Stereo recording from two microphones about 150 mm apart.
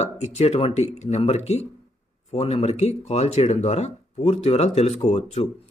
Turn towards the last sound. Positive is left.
turn(degrees=50)  # may be behind; listen again after turning